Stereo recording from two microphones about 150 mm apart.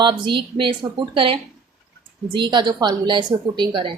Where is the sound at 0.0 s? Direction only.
30° right (ahead or behind).